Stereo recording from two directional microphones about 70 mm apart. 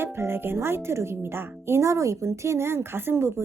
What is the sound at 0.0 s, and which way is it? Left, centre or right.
Speech, right.